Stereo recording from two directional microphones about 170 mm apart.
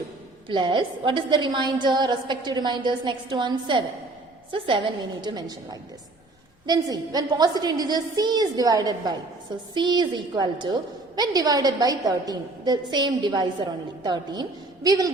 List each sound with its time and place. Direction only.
0.4 s a woman's voice: 30° right (ahead or behind)